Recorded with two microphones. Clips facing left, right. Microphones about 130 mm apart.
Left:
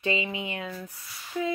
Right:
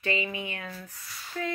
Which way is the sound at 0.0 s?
20° left (ahead or behind).